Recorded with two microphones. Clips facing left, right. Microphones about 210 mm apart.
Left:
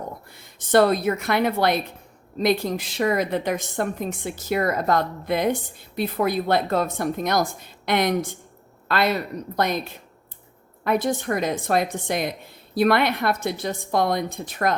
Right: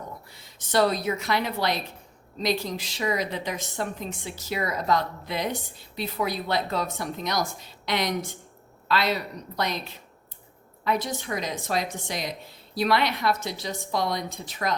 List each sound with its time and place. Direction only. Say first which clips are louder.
0.3 s a woman's voice: left 14 dB; 55° left (ahead or behind)